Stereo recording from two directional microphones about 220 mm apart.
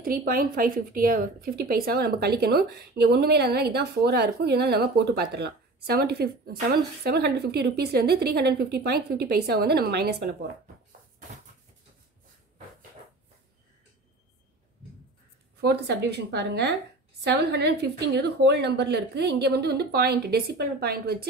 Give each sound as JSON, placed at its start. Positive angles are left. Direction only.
{"t": 0.0, "sound": "a woman's voice", "side_deg": -40}
{"t": 15.6, "sound": "a woman's voice", "side_deg": -50}